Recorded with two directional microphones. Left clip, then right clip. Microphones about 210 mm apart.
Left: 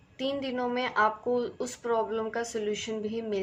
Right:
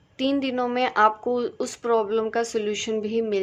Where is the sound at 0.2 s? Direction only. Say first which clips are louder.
Right 6 dB; 50° right (ahead or behind).